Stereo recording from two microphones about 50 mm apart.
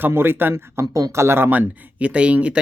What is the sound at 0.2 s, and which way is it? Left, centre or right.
Speech, right.